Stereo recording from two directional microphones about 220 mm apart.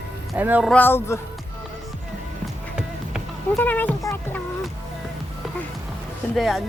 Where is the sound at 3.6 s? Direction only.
10° left (ahead or behind).